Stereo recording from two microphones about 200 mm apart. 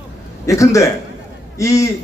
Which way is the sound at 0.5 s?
15° left (ahead or behind).